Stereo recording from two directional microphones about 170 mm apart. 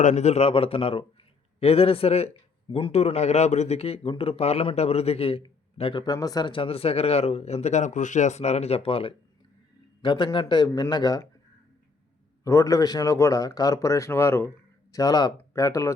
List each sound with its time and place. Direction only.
0.0 s a man's voice: 40° left (ahead or behind); by 11.3 s 20° left (ahead or behind)
12.5 s speech: 20° left (ahead or behind)